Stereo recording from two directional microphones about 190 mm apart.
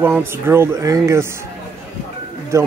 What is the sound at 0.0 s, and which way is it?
Speech, 10° right (ahead or behind).